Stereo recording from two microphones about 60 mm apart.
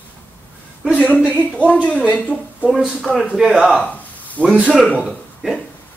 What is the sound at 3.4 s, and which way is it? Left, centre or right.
Speech, centre.